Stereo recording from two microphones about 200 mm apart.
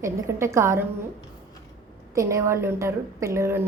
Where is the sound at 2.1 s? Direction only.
15° right (ahead or behind).